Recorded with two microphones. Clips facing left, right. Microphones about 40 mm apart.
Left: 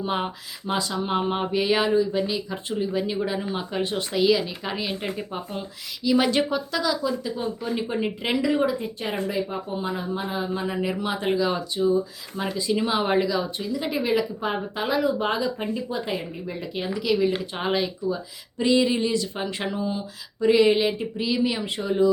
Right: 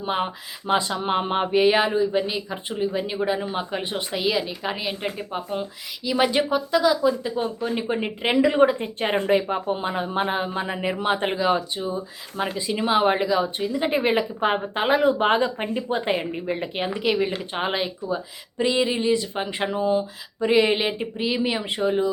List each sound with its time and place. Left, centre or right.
0.0 s speech: centre
0.7 s speech: right
7.1 s speech: right
7.6 s speech: centre
8.4 s speech: right
17.5 s speech: right